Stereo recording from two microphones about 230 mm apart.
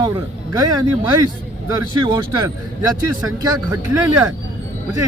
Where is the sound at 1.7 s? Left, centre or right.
Centre.